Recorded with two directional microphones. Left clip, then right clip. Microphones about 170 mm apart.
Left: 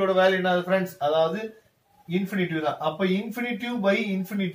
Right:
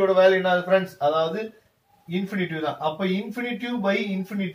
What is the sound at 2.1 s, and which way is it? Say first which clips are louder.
Speech: left 1 dB; centre (ahead or behind).